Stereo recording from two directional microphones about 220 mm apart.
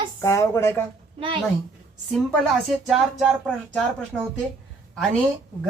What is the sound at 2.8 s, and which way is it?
Speech, centre (ahead or behind).